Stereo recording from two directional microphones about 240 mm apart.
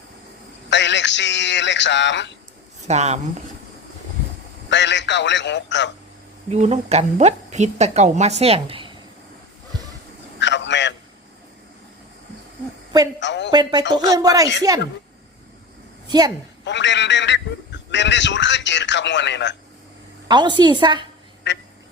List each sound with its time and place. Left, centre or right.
0.7 s a man's voice: left
2.8 s speech: right
4.7 s a man's voice: left
6.5 s speech: right
10.4 s a sound: left
13.1 s a man's voice: left
13.5 s speech: centre
16.0 s a woman's voice: centre
16.6 s a man's voice: left
20.2 s speech: centre
21.5 s vehicle: left